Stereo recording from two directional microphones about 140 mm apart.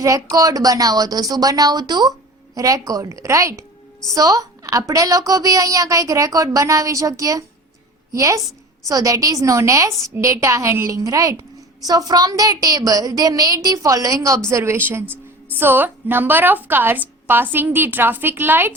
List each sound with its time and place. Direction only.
0.0 s a woman's voice: 25° right (ahead or behind)